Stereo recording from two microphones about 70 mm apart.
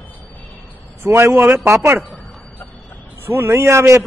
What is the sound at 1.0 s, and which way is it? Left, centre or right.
Speech, right.